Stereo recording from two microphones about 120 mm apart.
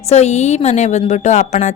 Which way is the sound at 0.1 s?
65° left (ahead or behind).